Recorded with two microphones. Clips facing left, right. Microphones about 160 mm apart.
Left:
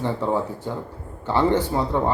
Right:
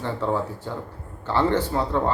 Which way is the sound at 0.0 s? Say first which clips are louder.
Left 2 dB; 15° left (ahead or behind).